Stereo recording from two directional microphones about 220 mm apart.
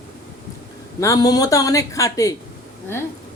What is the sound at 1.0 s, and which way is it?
Speech, 15° left (ahead or behind).